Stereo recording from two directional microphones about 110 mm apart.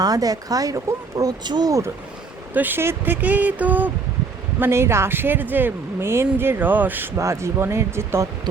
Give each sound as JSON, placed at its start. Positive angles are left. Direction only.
{"t": 0.0, "sound": "speech", "side_deg": -35}
{"t": 2.5, "sound": "speech", "side_deg": -15}